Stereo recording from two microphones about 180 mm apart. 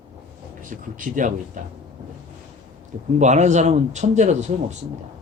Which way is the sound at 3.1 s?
40° right (ahead or behind).